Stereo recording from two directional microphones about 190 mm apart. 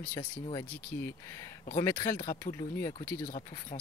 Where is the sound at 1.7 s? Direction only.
15° left (ahead or behind).